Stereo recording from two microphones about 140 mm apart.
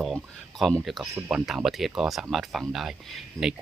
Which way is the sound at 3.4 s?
25° right (ahead or behind).